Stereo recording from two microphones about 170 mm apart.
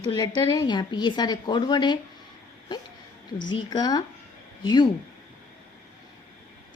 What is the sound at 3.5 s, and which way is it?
Speech, 25° left (ahead or behind).